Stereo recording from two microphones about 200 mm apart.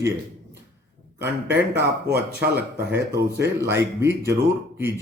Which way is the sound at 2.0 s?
55° right (ahead or behind).